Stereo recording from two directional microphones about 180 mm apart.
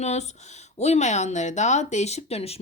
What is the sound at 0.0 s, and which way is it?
Speech, 40° left (ahead or behind).